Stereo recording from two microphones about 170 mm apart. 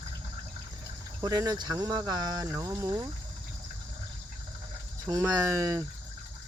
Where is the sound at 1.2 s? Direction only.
20° right (ahead or behind).